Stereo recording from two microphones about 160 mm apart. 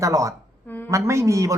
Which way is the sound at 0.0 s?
20° right (ahead or behind).